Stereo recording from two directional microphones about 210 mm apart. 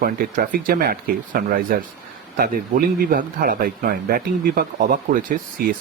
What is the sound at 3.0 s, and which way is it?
Speech, 45° right (ahead or behind).